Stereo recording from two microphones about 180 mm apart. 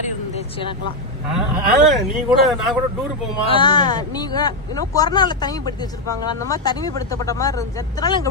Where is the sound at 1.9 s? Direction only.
Centre (ahead or behind).